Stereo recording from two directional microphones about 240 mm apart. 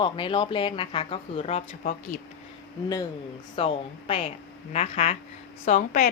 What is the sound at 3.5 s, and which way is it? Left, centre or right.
A woman's voice, left.